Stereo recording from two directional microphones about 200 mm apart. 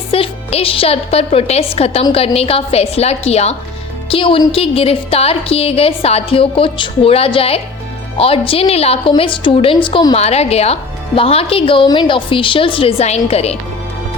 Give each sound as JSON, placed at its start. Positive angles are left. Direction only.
{"t": 0.1, "sound": "a woman's voice", "side_deg": 30}